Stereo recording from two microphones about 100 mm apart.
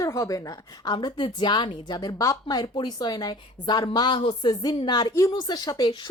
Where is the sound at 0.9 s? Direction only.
55° left (ahead or behind).